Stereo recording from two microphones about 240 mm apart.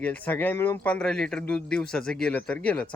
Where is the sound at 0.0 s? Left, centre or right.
Centre.